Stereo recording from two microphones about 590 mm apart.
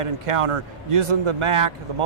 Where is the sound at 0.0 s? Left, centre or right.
Right.